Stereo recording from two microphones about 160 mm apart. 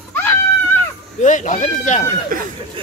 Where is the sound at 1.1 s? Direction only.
50° left (ahead or behind).